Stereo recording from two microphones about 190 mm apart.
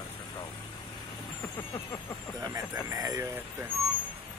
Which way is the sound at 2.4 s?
20° right (ahead or behind).